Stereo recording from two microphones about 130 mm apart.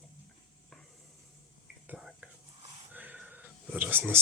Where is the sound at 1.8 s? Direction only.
5° right (ahead or behind).